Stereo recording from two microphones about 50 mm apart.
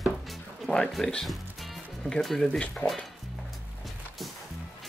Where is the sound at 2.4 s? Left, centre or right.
Centre.